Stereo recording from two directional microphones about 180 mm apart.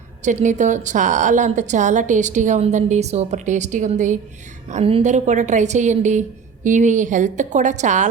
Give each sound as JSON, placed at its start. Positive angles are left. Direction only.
{"t": 0.2, "sound": "a woman's voice", "side_deg": -40}
{"t": 4.7, "sound": "a woman's voice", "side_deg": -30}